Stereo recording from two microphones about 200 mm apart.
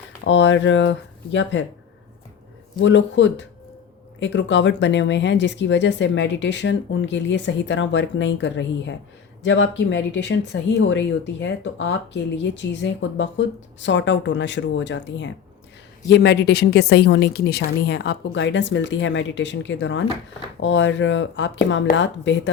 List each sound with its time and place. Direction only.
0.3 s speech: 65° left (ahead or behind)
2.8 s speech: 65° left (ahead or behind)